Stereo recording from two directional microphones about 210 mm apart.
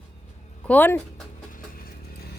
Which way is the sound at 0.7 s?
10° left (ahead or behind).